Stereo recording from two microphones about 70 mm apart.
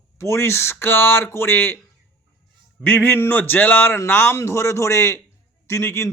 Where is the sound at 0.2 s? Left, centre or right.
Left.